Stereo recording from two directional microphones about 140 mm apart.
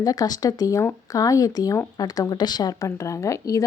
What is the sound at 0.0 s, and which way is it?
A woman's voice, 25° left (ahead or behind).